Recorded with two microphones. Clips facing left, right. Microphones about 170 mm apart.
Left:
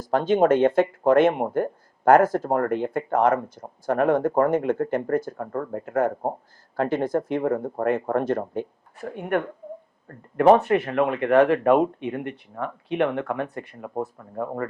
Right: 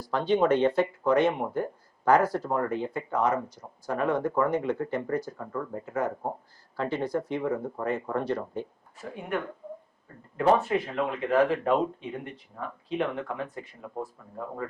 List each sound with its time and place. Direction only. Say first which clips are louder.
0.0 s speech: left 5 dB; 45° left (ahead or behind)